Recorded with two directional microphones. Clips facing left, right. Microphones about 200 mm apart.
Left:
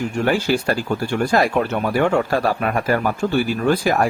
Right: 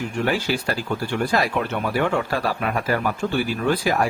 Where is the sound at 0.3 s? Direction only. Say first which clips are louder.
Left 5 dB; 45° left (ahead or behind).